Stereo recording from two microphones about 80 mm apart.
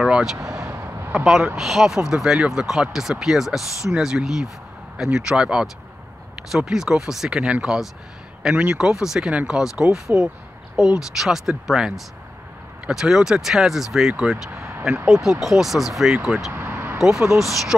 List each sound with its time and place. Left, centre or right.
0.0 s vehicle: centre
0.6 s vehicle: right
1.1 s speech: centre
15.4 s speech: centre
16.5 s vehicle: right
17.0 s speech: centre